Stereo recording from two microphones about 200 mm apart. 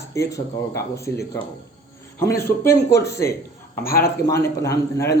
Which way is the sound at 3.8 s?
50° left (ahead or behind).